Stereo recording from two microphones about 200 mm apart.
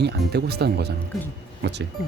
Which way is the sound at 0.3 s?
55° right (ahead or behind).